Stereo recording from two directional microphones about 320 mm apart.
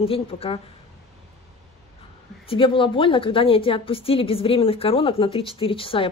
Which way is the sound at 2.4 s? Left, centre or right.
Centre.